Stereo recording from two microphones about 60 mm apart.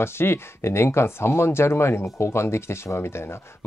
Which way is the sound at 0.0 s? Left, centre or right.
Left.